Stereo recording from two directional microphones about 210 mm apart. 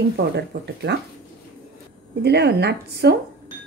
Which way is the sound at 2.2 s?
50° right (ahead or behind).